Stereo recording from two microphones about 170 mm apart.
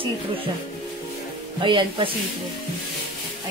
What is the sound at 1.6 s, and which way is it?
Speech, 30° right (ahead or behind).